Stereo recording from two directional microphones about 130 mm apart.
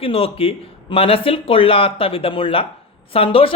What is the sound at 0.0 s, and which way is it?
A woman's voice, 45° left (ahead or behind).